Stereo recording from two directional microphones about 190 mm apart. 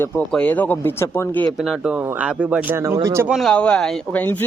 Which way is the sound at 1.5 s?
Centre (ahead or behind).